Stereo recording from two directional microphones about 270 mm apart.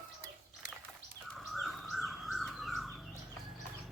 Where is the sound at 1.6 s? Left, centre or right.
Centre.